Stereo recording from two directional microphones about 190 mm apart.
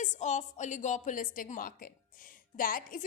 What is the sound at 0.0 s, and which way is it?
A woman's voice, 40° left (ahead or behind).